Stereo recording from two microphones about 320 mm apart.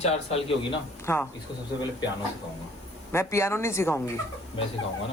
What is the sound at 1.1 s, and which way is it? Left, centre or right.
Speech, centre.